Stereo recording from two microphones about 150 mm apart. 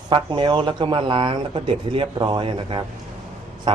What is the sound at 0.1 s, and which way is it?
Speech, 35° right (ahead or behind).